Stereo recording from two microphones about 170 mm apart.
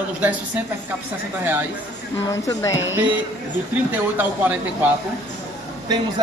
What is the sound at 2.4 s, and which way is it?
Speech, 20° left (ahead or behind).